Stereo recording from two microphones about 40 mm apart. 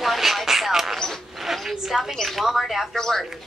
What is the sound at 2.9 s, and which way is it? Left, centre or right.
Speech, centre.